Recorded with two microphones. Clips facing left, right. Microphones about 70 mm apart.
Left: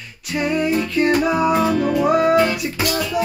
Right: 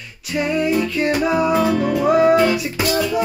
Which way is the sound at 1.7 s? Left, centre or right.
Centre.